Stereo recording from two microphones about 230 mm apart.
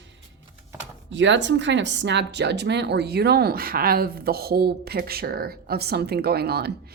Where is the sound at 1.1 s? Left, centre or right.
Right.